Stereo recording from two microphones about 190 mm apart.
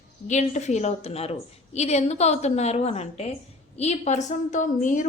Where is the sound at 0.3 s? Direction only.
40° left (ahead or behind).